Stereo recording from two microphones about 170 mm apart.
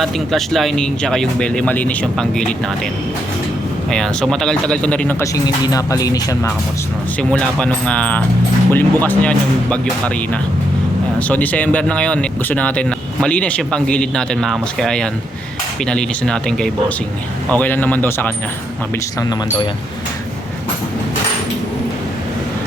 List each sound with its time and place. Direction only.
0.0 s speech: centre (ahead or behind)
3.8 s speech: 5° left (ahead or behind)
5.2 s speech: 20° left (ahead or behind)
7.2 s speech: 5° left (ahead or behind)
19.2 s speech: 25° left (ahead or behind)